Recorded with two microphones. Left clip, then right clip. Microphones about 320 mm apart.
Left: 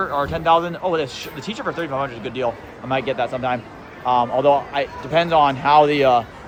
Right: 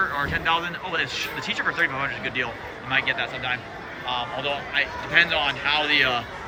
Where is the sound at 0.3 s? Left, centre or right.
Centre.